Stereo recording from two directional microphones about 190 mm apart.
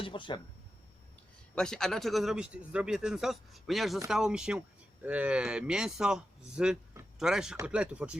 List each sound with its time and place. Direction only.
0.0 s speech: 25° left (ahead or behind)
1.5 s speech: 5° left (ahead or behind)